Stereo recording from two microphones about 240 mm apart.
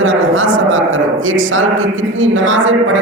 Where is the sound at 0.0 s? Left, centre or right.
Right.